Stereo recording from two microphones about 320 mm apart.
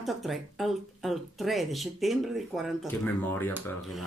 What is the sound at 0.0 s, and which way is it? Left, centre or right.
Speech, centre.